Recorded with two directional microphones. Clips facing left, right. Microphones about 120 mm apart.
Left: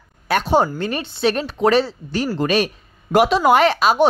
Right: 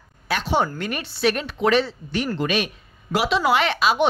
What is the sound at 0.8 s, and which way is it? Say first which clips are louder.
Speech: left 3 dB; 30° left (ahead or behind).